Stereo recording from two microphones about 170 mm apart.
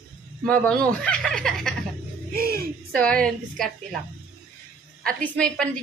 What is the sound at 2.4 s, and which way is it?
Speech, 60° right (ahead or behind).